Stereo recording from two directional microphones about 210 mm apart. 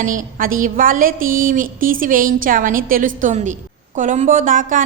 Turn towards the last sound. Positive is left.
turn(degrees=-40)  # may be behind; listen again after turning